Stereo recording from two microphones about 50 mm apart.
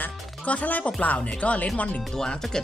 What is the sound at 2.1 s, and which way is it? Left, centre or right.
Speech, centre.